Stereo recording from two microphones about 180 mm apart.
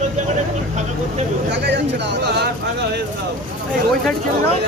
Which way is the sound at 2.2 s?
70° right (ahead or behind).